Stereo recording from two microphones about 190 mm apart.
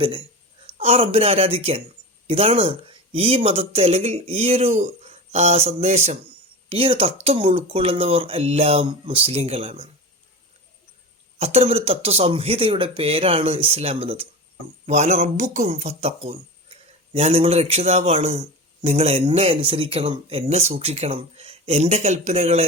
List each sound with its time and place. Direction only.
0.0 s speech: 25° right (ahead or behind)
11.3 s speech: 35° right (ahead or behind)